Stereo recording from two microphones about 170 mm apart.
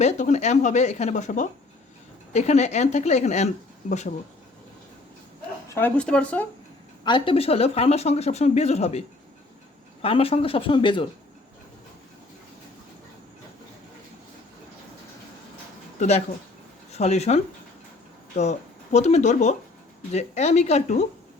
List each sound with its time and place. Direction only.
0.0 s speech: 40° left (ahead or behind)
5.6 s speech: 15° left (ahead or behind)
7.0 s speech: 30° left (ahead or behind)
16.0 s speech: 40° left (ahead or behind)